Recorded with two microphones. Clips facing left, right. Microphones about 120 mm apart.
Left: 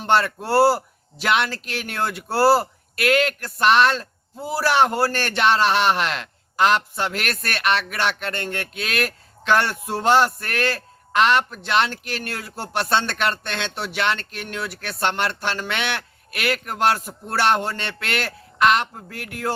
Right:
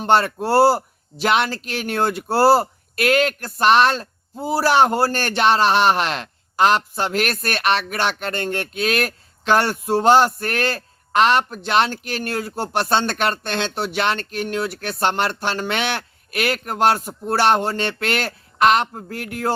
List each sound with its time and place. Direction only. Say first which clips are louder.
0.0 s speech: right 3 dB; 35° right (ahead or behind)